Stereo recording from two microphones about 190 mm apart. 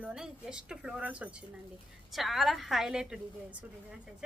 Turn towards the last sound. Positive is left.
turn(degrees=-5)  # may be behind; listen again after turning